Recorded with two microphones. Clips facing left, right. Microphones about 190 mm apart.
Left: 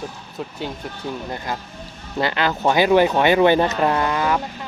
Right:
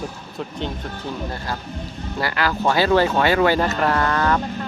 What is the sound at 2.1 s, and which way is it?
Speech, 20° left (ahead or behind).